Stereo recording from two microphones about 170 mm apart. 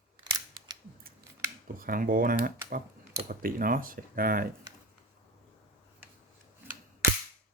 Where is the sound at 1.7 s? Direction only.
55° right (ahead or behind).